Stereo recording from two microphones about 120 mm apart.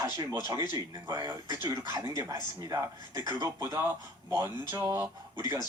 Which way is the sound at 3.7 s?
20° right (ahead or behind).